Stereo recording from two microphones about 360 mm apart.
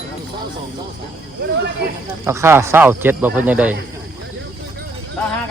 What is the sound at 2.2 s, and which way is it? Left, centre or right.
Speech, centre.